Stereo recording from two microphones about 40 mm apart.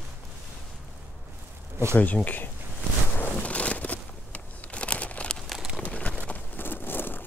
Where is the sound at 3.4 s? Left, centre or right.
Left.